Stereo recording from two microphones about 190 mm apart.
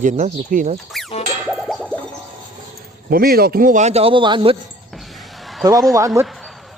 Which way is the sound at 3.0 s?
50° right (ahead or behind).